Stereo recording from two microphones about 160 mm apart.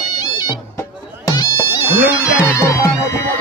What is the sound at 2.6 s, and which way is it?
Music, 15° left (ahead or behind).